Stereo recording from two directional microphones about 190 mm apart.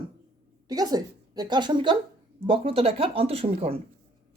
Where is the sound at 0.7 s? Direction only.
20° right (ahead or behind).